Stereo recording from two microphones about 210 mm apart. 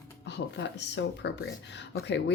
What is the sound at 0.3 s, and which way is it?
Speech, 55° left (ahead or behind).